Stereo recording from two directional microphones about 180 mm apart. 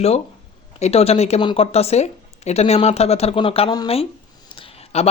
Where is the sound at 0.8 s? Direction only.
35° left (ahead or behind).